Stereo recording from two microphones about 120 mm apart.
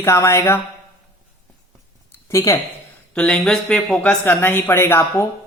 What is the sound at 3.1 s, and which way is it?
Speech, 5° left (ahead or behind).